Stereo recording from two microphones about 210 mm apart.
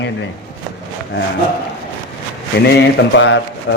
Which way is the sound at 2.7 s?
60° left (ahead or behind).